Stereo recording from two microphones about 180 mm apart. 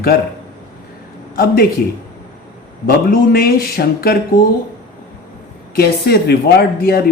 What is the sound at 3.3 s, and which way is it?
Speech, 55° left (ahead or behind).